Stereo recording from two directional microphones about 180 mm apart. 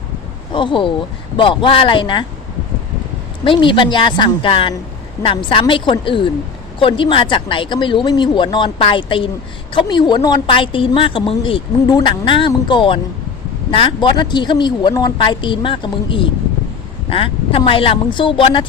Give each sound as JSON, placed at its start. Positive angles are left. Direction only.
{"t": 0.5, "sound": "a woman's voice", "side_deg": 30}
{"t": 3.4, "sound": "a woman's voice", "side_deg": 25}